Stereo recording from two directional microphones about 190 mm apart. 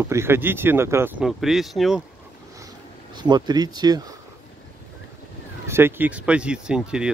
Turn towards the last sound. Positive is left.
turn(degrees=-5)  # may be behind; listen again after turning